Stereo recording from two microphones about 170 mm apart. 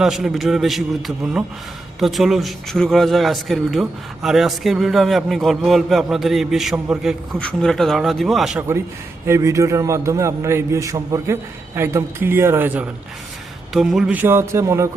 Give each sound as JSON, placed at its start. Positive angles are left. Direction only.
{"t": 0.0, "sound": "speech", "side_deg": 0}
{"t": 9.2, "sound": "a man's voice", "side_deg": -15}
{"t": 13.7, "sound": "a man's voice", "side_deg": 0}